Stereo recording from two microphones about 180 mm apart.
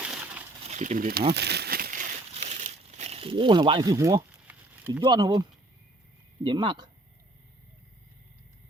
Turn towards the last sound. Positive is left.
turn(degrees=-25)  # may be behind; listen again after turning